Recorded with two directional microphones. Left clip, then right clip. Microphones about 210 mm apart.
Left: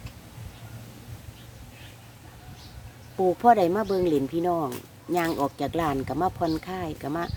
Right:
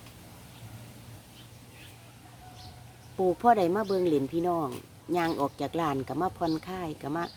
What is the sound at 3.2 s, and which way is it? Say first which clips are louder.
Speech: left 4 dB; centre (ahead or behind).